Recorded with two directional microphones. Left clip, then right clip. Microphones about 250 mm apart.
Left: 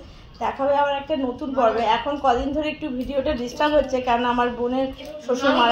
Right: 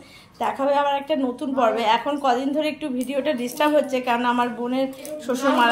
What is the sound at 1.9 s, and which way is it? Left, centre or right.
A woman's voice, centre.